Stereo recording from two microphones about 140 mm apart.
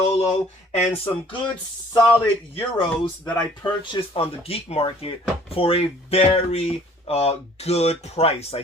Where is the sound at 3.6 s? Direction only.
35° left (ahead or behind).